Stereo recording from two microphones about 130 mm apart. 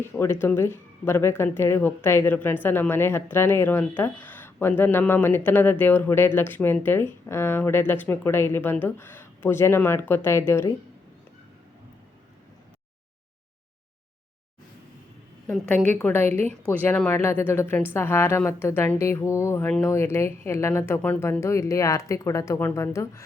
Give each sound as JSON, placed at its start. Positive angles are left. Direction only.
{"t": 0.0, "sound": "a woman's voice", "side_deg": 20}
{"t": 15.4, "sound": "a woman's voice", "side_deg": 10}